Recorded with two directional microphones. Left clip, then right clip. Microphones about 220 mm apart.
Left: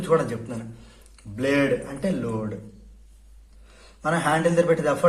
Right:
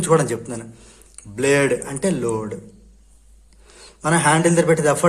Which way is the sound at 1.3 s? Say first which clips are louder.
Right 5 dB; 40° right (ahead or behind).